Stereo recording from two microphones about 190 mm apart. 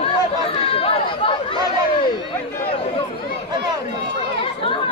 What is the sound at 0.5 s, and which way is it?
Chatter, 30° left (ahead or behind).